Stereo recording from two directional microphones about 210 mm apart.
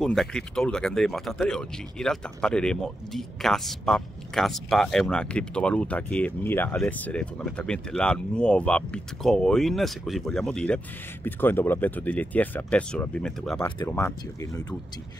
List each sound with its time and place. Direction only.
0.0 s speech: centre (ahead or behind)
13.7 s speech: 20° left (ahead or behind)